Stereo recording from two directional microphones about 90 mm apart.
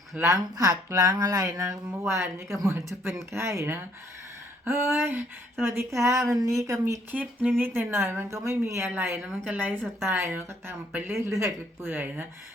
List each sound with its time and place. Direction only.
0.2 s speech: 40° right (ahead or behind)
7.1 s speech: 20° right (ahead or behind)